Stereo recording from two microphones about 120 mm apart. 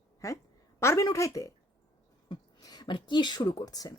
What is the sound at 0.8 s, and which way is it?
A woman's voice, 25° left (ahead or behind).